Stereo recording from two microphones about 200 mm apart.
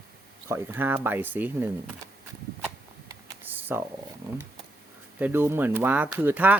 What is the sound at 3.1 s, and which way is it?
Computer keyboard, 10° right (ahead or behind).